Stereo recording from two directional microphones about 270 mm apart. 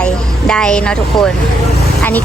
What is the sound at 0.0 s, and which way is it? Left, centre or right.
Speech, centre.